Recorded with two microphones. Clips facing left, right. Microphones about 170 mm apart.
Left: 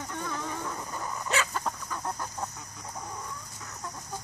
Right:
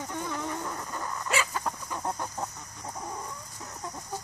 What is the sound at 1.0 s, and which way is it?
Dog, 10° left (ahead or behind).